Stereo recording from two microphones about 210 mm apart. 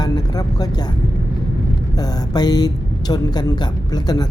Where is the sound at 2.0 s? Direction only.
20° left (ahead or behind).